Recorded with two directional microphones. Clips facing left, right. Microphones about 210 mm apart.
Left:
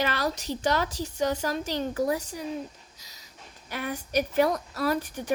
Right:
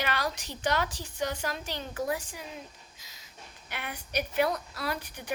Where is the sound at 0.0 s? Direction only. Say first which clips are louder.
Left 4 dB; 40° left (ahead or behind).